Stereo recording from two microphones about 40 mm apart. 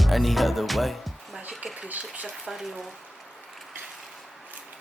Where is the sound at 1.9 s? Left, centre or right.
Right.